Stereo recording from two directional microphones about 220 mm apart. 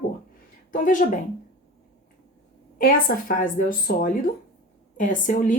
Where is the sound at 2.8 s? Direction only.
40° left (ahead or behind).